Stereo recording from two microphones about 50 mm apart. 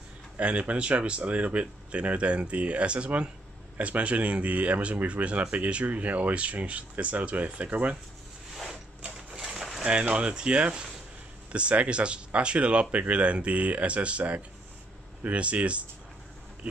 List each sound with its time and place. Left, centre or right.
0.4 s speech: right
9.3 s a sound: centre
9.8 s speech: right